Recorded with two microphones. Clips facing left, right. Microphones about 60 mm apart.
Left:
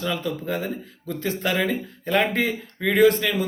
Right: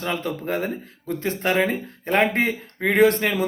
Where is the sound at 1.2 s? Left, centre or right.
Right.